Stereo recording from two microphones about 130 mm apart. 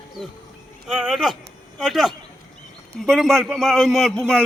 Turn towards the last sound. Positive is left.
turn(degrees=5)  # may be behind; listen again after turning